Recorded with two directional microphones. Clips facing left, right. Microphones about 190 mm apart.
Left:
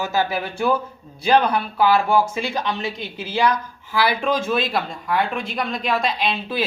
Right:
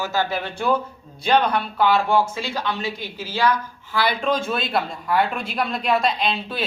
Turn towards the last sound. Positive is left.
turn(degrees=0)  # may be behind; listen again after turning